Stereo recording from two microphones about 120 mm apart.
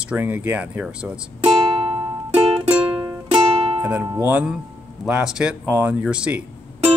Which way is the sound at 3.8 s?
10° right (ahead or behind).